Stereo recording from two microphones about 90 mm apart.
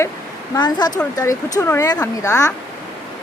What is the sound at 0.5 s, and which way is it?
Speech, 50° left (ahead or behind).